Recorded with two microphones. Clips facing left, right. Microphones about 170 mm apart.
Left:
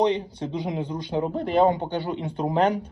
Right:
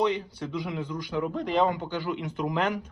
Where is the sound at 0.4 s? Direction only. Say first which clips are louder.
Left 4 dB; 25° left (ahead or behind).